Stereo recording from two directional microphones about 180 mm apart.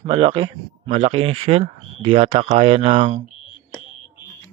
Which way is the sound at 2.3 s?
45° right (ahead or behind).